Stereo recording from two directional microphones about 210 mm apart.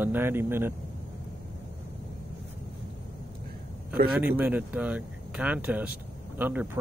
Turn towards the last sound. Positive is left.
turn(degrees=-10)  # may be behind; listen again after turning